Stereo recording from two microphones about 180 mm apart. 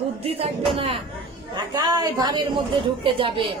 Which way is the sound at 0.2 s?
30° right (ahead or behind).